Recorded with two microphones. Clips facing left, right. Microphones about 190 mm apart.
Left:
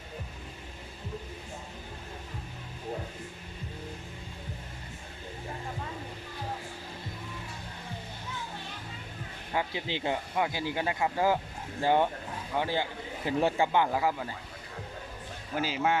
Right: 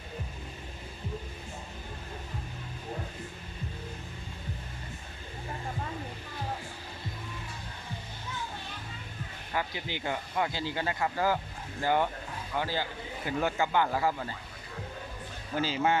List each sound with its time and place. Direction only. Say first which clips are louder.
9.5 s speech: left 2 dB; 20° left (ahead or behind)
10.3 s speech: left 1 dB; 15° left (ahead or behind)
13.8 s speech: left 1 dB; 10° left (ahead or behind)
15.5 s a man's voice: right 1 dB; 5° left (ahead or behind)